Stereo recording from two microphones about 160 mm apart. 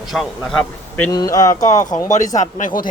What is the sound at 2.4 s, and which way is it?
Speech, 55° left (ahead or behind).